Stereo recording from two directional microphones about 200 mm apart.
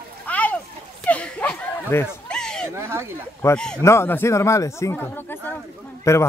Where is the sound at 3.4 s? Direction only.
5° left (ahead or behind).